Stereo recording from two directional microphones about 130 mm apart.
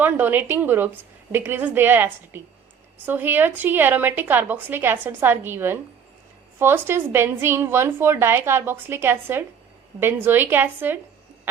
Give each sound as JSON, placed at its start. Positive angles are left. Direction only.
{"t": 0.0, "sound": "a woman's voice", "side_deg": -15}